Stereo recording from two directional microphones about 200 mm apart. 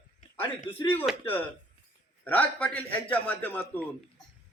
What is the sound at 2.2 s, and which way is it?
A man's voice, 10° left (ahead or behind).